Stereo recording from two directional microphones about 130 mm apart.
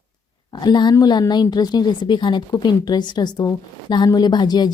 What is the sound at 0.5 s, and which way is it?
A woman's voice, 35° left (ahead or behind).